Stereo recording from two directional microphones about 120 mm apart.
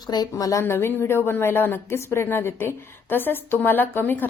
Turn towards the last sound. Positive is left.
turn(degrees=15)  # may be behind; listen again after turning